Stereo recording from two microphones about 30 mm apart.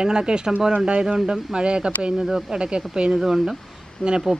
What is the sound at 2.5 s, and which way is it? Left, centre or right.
Speech, right.